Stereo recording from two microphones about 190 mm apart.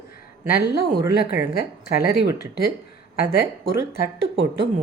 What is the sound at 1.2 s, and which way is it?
Speech, 50° left (ahead or behind).